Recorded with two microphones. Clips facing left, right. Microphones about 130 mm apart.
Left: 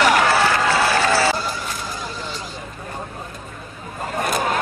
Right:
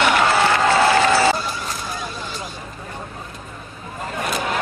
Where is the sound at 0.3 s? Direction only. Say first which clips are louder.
Right 1 dB; 25° right (ahead or behind).